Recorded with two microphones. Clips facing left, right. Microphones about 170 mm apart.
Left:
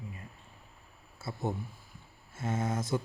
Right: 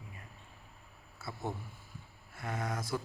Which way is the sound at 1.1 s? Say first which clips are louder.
Left 5 dB; 25° left (ahead or behind).